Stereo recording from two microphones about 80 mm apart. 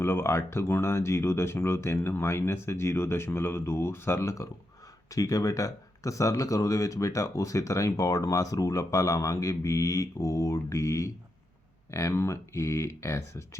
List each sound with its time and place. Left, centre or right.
0.0 s speech: left
5.1 s speech: left